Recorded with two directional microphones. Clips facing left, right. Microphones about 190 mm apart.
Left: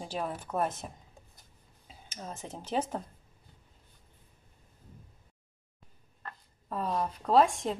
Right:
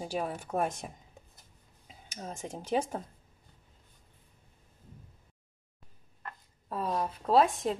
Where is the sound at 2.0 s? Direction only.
10° right (ahead or behind).